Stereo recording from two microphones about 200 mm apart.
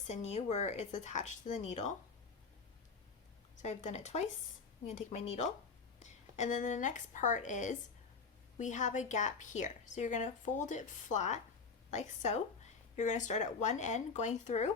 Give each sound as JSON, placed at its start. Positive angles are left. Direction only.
{"t": 0.1, "sound": "a woman's voice", "side_deg": 35}
{"t": 3.6, "sound": "a woman's voice", "side_deg": 35}